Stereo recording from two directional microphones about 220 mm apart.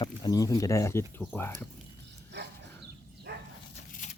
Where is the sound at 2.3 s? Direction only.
50° right (ahead or behind).